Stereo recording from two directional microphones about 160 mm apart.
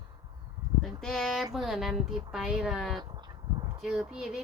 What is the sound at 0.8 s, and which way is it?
A woman's voice, 5° left (ahead or behind).